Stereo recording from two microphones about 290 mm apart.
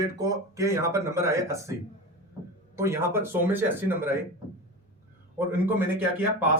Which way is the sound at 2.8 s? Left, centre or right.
Centre.